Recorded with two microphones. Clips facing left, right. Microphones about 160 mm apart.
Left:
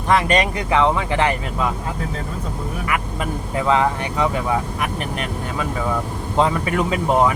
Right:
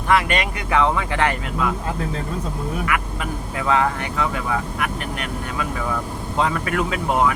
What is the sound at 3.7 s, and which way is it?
Speech, 25° left (ahead or behind).